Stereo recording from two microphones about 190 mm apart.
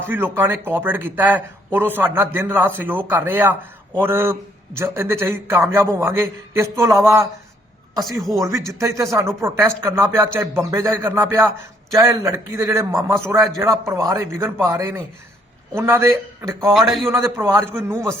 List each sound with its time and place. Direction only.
0.0 s speech: 10° right (ahead or behind)
8.4 s speech: 15° right (ahead or behind)
16.7 s a man's voice: centre (ahead or behind)
17.1 s speech: 15° right (ahead or behind)